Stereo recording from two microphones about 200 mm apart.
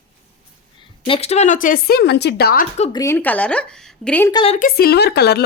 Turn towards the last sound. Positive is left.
turn(degrees=55)  # may be behind; listen again after turning